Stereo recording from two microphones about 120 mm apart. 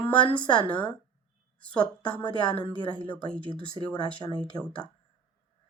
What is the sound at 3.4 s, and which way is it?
Speech, 45° right (ahead or behind).